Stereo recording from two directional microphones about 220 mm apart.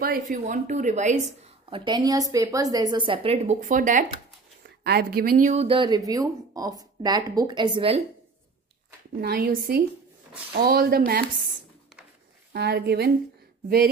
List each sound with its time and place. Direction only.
0.0 s a woman's voice: 40° right (ahead or behind); by 8.0 s 25° right (ahead or behind)
9.2 s speech: 45° right (ahead or behind)
12.5 s speech: 50° right (ahead or behind)